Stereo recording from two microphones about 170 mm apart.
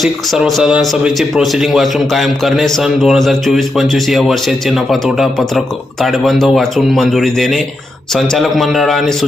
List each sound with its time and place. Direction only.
0.0 s speech: centre (ahead or behind)